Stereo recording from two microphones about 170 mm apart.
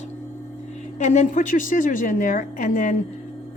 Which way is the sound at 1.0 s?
45° left (ahead or behind).